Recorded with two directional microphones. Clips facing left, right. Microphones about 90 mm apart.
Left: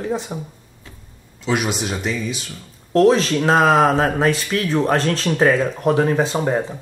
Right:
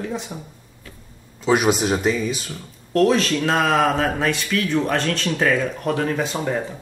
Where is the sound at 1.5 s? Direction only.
40° right (ahead or behind).